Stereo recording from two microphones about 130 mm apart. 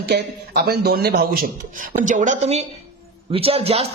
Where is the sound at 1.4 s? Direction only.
90° right.